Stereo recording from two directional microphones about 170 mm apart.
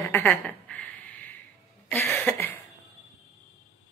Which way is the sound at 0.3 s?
5° left (ahead or behind).